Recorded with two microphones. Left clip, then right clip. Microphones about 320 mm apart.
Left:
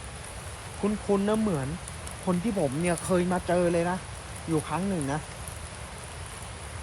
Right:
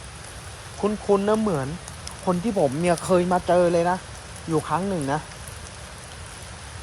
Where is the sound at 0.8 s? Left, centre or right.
Right.